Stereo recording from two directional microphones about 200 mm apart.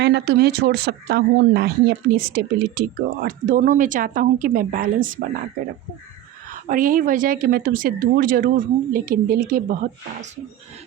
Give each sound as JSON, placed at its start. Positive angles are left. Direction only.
{"t": 0.0, "sound": "speech", "side_deg": -60}
{"t": 6.5, "sound": "speech", "side_deg": -40}